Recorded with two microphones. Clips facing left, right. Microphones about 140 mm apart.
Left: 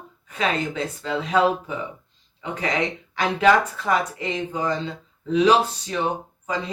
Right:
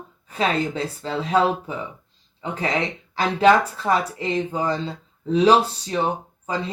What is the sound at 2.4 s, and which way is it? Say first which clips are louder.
Speech: right 1 dB; 30° right (ahead or behind).